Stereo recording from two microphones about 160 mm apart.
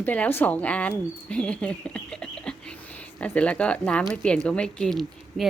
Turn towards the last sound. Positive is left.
turn(degrees=0)  # may be behind; listen again after turning